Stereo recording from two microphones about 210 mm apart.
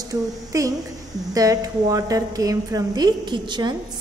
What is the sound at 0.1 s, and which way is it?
A woman's voice, 15° right (ahead or behind).